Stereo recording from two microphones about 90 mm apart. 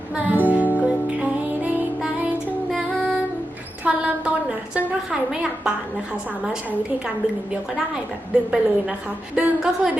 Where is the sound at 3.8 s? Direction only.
15° right (ahead or behind).